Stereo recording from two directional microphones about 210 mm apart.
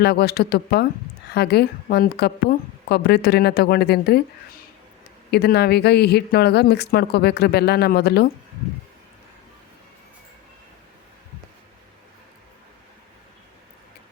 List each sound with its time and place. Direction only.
0.0 s speech: 50° left (ahead or behind)
5.3 s speech: 50° left (ahead or behind)